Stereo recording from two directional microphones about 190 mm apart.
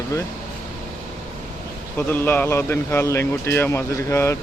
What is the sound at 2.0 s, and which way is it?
Speech, 10° left (ahead or behind).